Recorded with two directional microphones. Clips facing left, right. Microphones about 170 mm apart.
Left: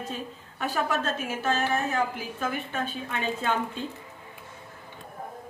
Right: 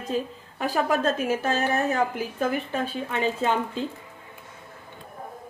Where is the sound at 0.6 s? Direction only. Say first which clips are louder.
Right 5 dB; 40° right (ahead or behind).